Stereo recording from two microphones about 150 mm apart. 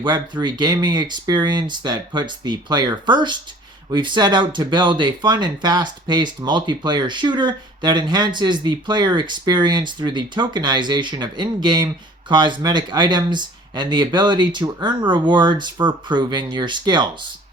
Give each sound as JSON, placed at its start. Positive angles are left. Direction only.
{"t": 0.0, "sound": "speech", "side_deg": -30}